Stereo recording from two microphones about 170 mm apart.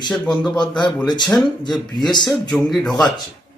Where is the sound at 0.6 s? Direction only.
25° left (ahead or behind).